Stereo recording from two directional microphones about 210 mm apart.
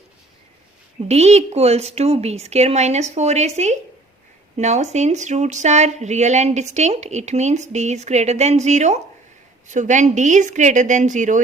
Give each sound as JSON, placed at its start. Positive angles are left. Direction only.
{"t": 0.9, "sound": "speech", "side_deg": -30}